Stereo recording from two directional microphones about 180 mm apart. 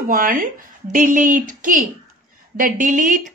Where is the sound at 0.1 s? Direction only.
50° right (ahead or behind).